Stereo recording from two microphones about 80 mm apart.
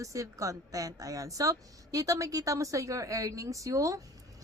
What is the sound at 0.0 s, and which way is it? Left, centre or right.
A woman's voice, right.